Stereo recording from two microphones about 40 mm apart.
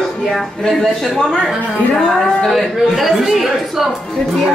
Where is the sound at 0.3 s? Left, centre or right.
Centre.